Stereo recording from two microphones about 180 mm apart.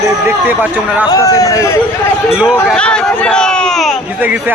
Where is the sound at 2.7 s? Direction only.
5° left (ahead or behind).